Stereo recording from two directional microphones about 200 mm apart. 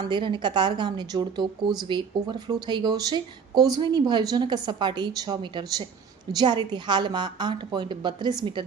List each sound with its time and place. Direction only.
0.0 s speech: 25° right (ahead or behind)